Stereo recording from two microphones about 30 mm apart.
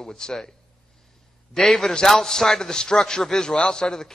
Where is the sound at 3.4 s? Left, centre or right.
Left.